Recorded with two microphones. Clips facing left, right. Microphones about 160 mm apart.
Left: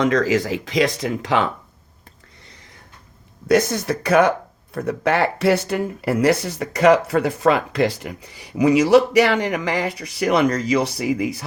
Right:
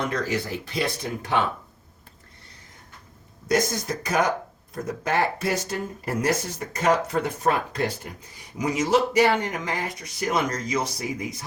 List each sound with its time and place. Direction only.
0.0 s speech: 90° left
3.4 s speech: 65° left (ahead or behind)